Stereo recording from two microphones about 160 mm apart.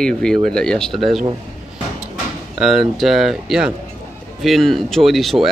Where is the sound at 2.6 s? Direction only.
Centre (ahead or behind).